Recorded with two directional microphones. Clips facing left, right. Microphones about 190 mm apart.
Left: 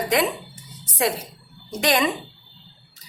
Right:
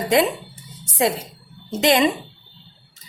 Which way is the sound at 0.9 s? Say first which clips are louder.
Right 3 dB; 25° right (ahead or behind).